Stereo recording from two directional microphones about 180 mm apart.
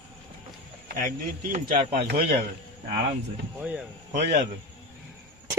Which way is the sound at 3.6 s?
5° right (ahead or behind).